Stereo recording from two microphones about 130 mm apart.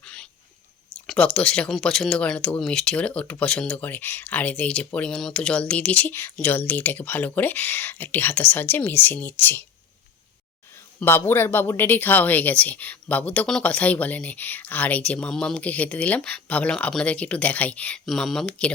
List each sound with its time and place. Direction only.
0.0 s a sound: 5° left (ahead or behind)
0.9 s speech: 5° left (ahead or behind)
11.0 s speech: 15° left (ahead or behind)
18.0 s speech: centre (ahead or behind)